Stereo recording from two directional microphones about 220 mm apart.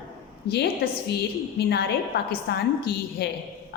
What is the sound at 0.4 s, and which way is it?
A woman's voice, 50° left (ahead or behind).